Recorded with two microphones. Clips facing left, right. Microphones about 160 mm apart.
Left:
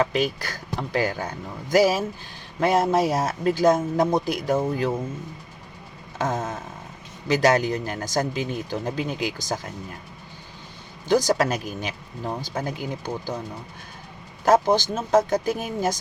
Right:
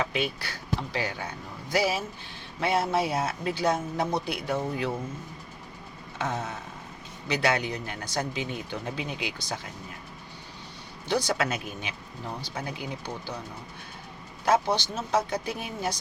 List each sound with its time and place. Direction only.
0.0 s speech: 40° left (ahead or behind)
6.1 s speech: 45° left (ahead or behind)
11.1 s speech: 40° left (ahead or behind)
14.4 s speech: 45° left (ahead or behind)